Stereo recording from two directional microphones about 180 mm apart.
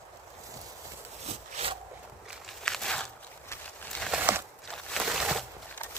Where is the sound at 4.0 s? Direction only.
5° right (ahead or behind).